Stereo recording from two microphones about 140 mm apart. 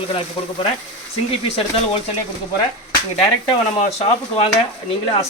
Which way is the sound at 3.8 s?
55° left (ahead or behind).